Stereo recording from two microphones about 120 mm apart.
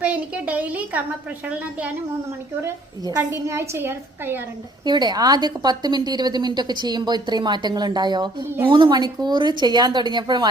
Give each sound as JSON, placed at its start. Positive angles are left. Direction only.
{"t": 0.0, "sound": "a woman's voice", "side_deg": -15}
{"t": 3.3, "sound": "a woman's voice", "side_deg": -25}
{"t": 4.9, "sound": "a woman's voice", "side_deg": -35}